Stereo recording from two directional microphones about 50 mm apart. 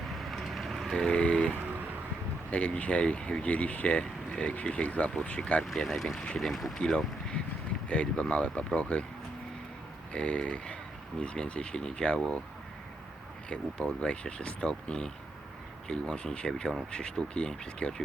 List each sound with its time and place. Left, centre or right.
0.2 s vehicle: centre
0.9 s speech: centre
5.6 s speech: centre
6.1 s speech: centre
6.7 s speech: centre
8.1 s speech: left
10.1 s speech: left
13.5 s speech: centre